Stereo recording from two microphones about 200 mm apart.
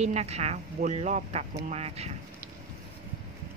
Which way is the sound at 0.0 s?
35° right (ahead or behind).